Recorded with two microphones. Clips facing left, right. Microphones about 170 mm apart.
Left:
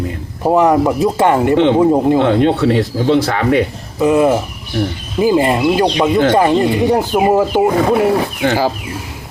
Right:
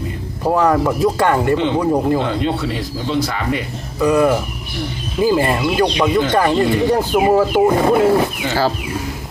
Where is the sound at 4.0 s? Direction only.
20° left (ahead or behind).